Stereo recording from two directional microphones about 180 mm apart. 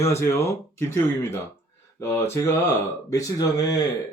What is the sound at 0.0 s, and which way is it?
Speech, 15° left (ahead or behind).